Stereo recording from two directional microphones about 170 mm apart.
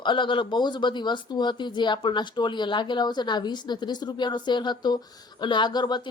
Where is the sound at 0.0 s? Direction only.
30° left (ahead or behind).